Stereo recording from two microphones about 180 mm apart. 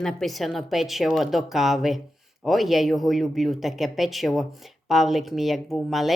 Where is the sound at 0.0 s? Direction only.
Centre (ahead or behind).